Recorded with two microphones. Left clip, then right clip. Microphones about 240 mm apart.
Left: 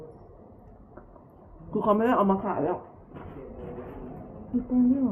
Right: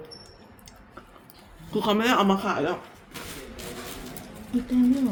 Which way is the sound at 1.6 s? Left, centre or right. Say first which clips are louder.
Even; centre.